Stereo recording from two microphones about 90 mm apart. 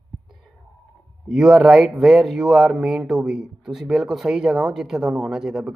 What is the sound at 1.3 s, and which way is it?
Speech, 5° right (ahead or behind).